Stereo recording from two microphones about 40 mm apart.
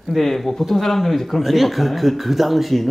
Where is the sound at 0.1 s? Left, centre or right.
Centre.